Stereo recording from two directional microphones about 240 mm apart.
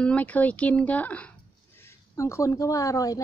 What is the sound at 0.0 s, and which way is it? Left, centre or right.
Speech, centre.